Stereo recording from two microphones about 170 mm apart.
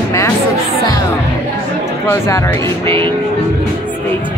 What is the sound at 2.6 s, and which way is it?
Speech, 30° right (ahead or behind).